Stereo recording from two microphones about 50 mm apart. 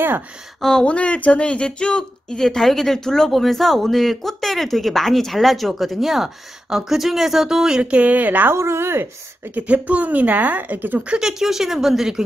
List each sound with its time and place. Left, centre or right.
0.6 s speech: centre
0.8 s speech: left; by 7.8 s centre
7.8 s a woman's voice: right
8.5 s speech: right
9.6 s a woman's voice: right
11.1 s speech: centre